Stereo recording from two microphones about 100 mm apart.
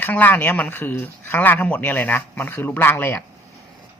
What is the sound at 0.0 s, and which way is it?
Speech, 20° left (ahead or behind).